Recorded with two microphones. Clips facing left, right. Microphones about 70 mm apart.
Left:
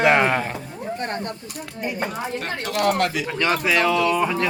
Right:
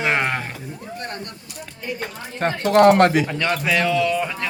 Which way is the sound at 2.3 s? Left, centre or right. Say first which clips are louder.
Right 12 dB; right.